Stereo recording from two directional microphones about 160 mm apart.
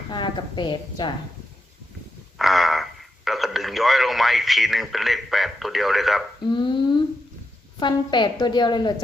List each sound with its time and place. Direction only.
0.1 s a woman's voice: 30° left (ahead or behind)
2.4 s speech: centre (ahead or behind)
6.5 s a woman's voice: 30° left (ahead or behind)